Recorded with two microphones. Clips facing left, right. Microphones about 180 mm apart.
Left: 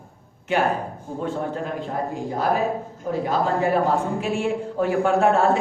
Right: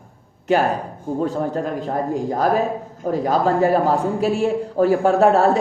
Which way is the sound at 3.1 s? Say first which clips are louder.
Right 4 dB; 40° right (ahead or behind).